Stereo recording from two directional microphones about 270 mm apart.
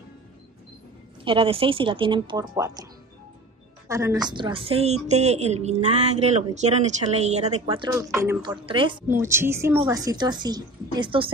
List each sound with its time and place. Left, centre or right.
1.2 s a woman's voice: centre
3.9 s a woman's voice: centre